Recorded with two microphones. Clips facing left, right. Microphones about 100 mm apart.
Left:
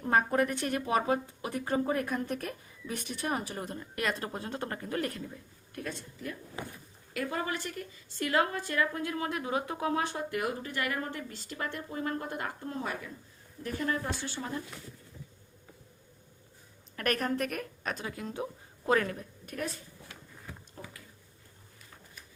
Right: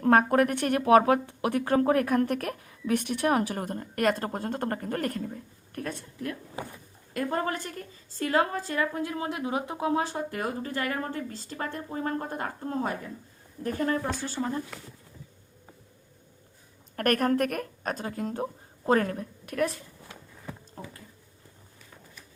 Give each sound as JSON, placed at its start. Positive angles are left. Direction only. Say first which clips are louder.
{"t": 0.0, "sound": "speech", "louder": "right 6 dB", "side_deg": -65}
{"t": 8.2, "sound": "a woman's voice", "louder": "right 3 dB", "side_deg": -30}
{"t": 16.9, "sound": "speech", "louder": "right 6 dB", "side_deg": -50}
{"t": 20.8, "sound": "a woman's voice", "louder": "right 3 dB", "side_deg": -40}